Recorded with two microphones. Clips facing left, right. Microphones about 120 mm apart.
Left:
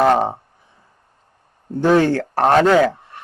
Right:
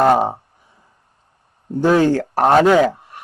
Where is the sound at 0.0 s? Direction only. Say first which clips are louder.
Right 1 dB; 10° right (ahead or behind).